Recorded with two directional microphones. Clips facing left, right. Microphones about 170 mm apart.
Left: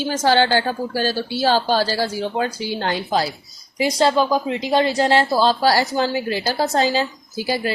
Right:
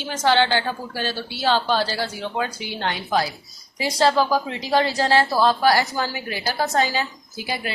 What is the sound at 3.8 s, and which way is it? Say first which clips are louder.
Speech: left 2 dB; 20° left (ahead or behind).